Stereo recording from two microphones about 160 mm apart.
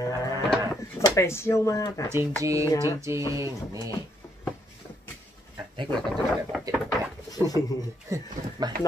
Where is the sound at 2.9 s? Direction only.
20° right (ahead or behind).